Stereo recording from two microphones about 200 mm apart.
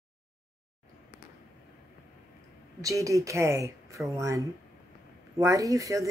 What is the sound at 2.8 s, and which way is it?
Speech, 15° right (ahead or behind).